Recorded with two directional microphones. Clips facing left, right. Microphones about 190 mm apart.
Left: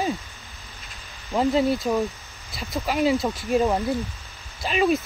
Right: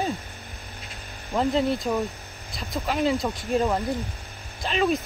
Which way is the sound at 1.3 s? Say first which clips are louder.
Left 2 dB; 5° left (ahead or behind).